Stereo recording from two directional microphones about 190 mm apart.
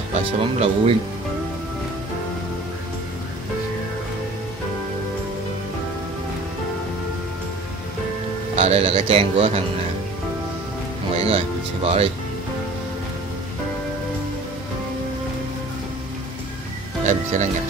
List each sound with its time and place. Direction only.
0.1 s a man's voice: 30° right (ahead or behind)
8.5 s a man's voice: 30° right (ahead or behind)
11.1 s speech: 30° right (ahead or behind)
17.0 s speech: 40° right (ahead or behind)